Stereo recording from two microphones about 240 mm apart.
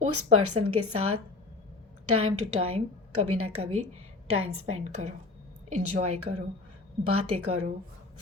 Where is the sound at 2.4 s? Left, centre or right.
Right.